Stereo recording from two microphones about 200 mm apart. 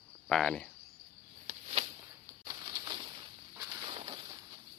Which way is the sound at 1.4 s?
30° right (ahead or behind).